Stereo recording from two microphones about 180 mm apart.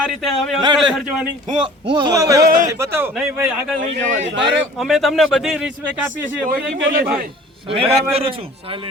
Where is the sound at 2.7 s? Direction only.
15° right (ahead or behind).